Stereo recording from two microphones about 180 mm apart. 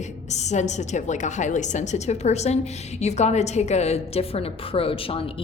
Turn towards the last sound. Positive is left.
turn(degrees=30)  # may be behind; listen again after turning